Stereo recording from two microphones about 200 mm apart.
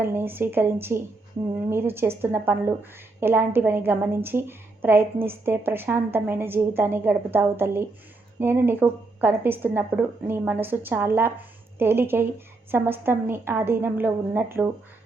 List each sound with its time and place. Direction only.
0.0 s a woman's voice: 10° right (ahead or behind)